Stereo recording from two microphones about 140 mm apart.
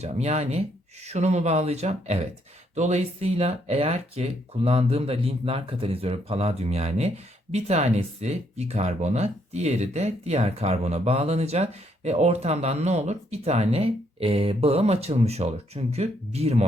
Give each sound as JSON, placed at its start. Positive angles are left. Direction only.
{"t": 0.0, "sound": "speech", "side_deg": -50}